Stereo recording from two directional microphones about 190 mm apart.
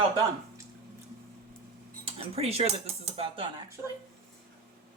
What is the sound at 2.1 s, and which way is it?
Speech, 30° right (ahead or behind).